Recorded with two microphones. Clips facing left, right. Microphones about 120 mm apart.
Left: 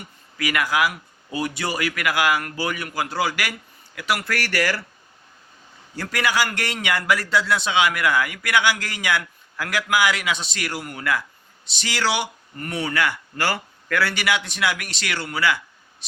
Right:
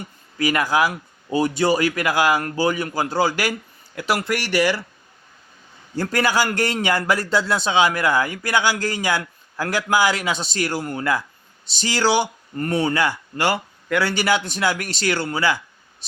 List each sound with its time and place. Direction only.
0.0 s speech: 30° right (ahead or behind)
4.3 s speech: 20° right (ahead or behind)
6.0 s speech: 35° right (ahead or behind); by 14.0 s 20° right (ahead or behind)
14.0 s speech: 35° right (ahead or behind)